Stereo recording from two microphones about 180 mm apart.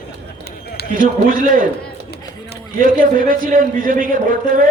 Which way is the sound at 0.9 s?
50° right (ahead or behind).